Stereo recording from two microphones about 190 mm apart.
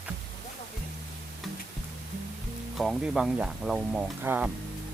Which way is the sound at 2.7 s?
Centre (ahead or behind).